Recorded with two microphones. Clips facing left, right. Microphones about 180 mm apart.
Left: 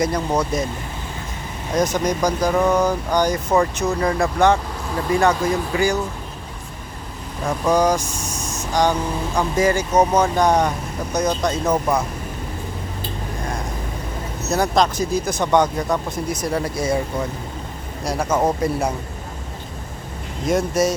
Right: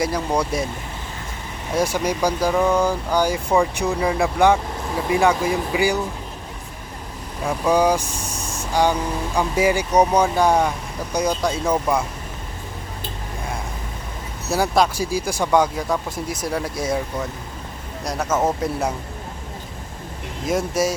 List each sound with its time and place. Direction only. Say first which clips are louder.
1.7 s speech: left 1 dB; 10° right (ahead or behind)
7.4 s speech: even; 10° right (ahead or behind)
8.0 s vehicle: left 1 dB; 35° right (ahead or behind)
8.7 s speech: even; 10° right (ahead or behind)
14.5 s a man's voice: even; 5° right (ahead or behind)
18.0 s a man's voice: left 2 dB; centre (ahead or behind)
20.4 s a man's voice: left 2 dB; 5° right (ahead or behind)